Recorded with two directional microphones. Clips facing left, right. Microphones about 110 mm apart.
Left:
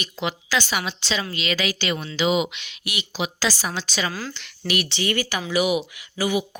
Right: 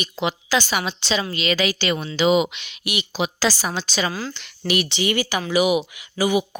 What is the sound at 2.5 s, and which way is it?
Speech, 20° right (ahead or behind).